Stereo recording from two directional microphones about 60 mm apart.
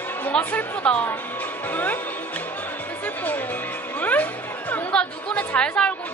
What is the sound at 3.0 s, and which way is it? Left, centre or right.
Music, left.